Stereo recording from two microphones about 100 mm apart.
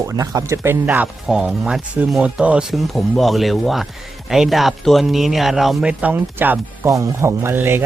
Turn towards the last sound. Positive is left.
turn(degrees=-20)  # may be behind; listen again after turning